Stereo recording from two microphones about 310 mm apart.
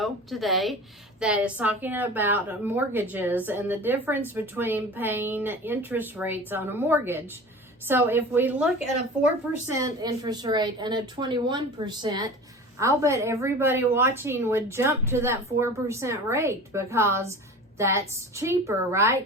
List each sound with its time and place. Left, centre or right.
0.0 s a woman's voice: centre